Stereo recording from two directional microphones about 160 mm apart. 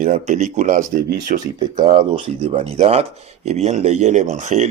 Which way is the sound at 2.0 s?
35° right (ahead or behind).